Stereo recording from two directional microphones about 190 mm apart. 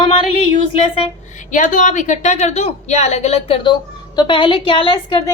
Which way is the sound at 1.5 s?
45° left (ahead or behind).